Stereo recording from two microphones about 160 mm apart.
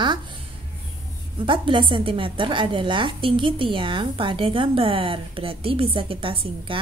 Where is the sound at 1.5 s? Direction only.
30° right (ahead or behind).